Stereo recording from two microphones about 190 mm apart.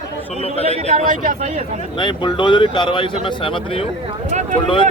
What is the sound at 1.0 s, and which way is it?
Speech, 40° right (ahead or behind).